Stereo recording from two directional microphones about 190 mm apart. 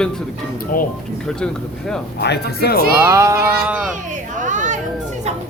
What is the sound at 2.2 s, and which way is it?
Speech, 60° left (ahead or behind).